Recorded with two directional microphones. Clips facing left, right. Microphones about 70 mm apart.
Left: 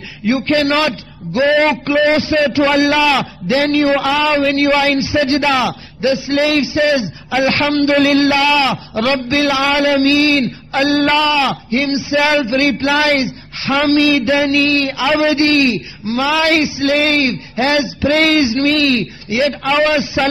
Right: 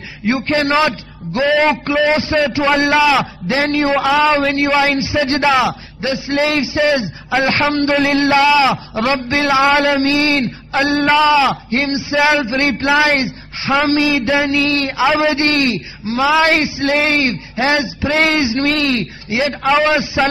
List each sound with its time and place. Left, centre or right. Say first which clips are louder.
0.2 s a man's voice: left 2 dB; right
1.5 s a man's voice: even; centre
2.1 s a man's voice: left 2 dB; right
5.5 s a sound: right 1 dB; centre
6.0 s a man's voice: left 2 dB; right
10.8 s a sound: even; centre
11.7 s a man's voice: left 1 dB; right
15.5 s a man's voice: left 3 dB; right
16.2 s a man's voice: right 1 dB; right
19.7 s a sound: right 1 dB; centre